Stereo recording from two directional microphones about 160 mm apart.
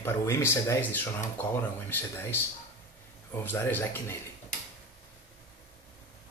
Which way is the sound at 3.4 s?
10° left (ahead or behind).